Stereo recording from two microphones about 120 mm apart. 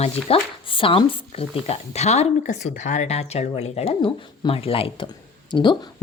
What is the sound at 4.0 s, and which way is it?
Speech, 45° left (ahead or behind).